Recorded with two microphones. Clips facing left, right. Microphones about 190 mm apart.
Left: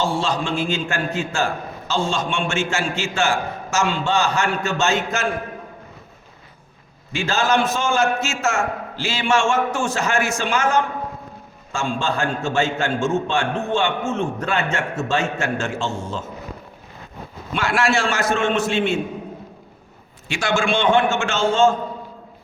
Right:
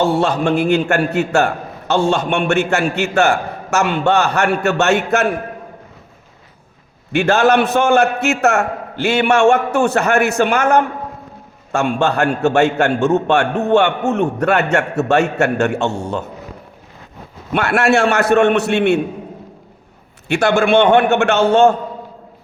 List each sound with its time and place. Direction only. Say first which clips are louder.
0.0 s a man's voice: right 7 dB; 60° right (ahead or behind)
7.1 s a man's voice: right 7 dB; 65° right (ahead or behind)
17.5 s a man's voice: right 6 dB; 60° right (ahead or behind)
20.2 s a man's voice: right 7 dB; 60° right (ahead or behind)